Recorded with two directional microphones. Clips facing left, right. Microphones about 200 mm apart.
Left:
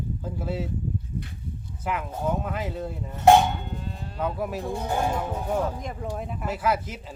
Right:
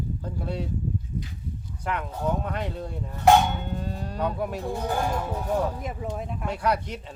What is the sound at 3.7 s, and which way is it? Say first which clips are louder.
Cattle: right 4 dB; 45° right (ahead or behind).